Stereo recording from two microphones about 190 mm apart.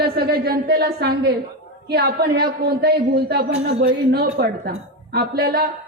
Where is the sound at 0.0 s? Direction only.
55° right (ahead or behind).